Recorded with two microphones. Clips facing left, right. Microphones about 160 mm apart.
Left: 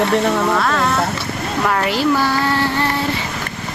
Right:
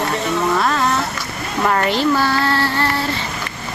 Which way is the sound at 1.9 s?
10° left (ahead or behind).